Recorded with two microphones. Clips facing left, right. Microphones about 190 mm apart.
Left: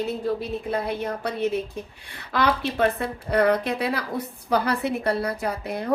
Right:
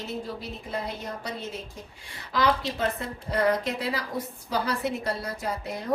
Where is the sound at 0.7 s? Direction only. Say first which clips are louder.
Left 6 dB; 60° left (ahead or behind).